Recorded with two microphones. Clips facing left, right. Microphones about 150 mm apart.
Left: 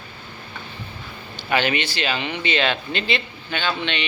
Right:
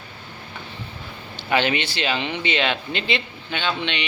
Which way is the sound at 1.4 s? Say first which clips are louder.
Even; 20° right (ahead or behind).